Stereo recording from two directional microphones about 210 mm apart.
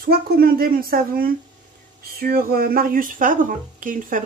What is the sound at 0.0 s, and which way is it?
Speech, 45° right (ahead or behind).